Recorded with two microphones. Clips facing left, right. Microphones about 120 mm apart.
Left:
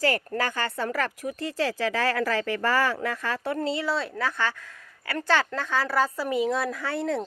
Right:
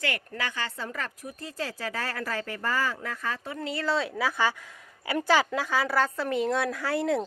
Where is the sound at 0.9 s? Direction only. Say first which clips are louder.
Left 8 dB; 75° left (ahead or behind).